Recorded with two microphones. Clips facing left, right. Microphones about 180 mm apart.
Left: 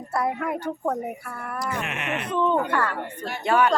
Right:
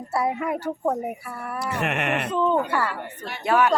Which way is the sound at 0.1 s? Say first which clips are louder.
Right 1 dB; 10° right (ahead or behind).